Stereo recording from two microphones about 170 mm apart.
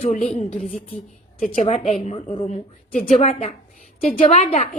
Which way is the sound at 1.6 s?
40° left (ahead or behind).